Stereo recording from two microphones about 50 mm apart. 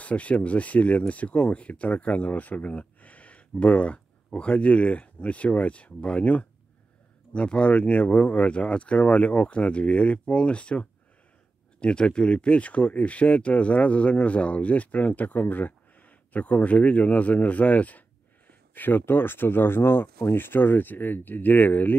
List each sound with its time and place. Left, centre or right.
0.0 s speech: left